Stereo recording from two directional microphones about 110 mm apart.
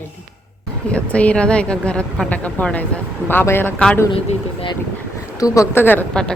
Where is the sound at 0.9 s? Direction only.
10° left (ahead or behind).